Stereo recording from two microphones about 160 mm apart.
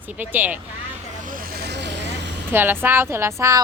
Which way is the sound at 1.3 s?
65° right (ahead or behind).